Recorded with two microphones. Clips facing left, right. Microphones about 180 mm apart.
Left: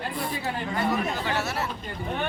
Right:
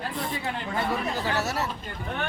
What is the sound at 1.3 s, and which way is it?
Speech, 40° right (ahead or behind).